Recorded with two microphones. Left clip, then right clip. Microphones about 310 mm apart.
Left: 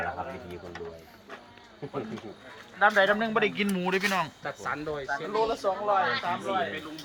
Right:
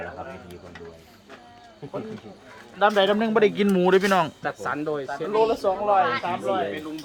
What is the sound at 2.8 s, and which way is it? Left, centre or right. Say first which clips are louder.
Speech: right 3 dB; right.